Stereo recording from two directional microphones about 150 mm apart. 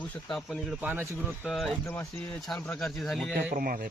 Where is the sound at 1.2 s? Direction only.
Centre (ahead or behind).